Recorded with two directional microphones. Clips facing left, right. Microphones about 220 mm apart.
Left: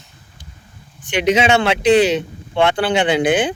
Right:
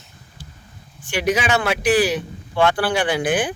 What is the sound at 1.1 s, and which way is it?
A man's voice, 20° left (ahead or behind).